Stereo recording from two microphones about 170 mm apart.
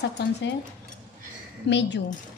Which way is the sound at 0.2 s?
90° left.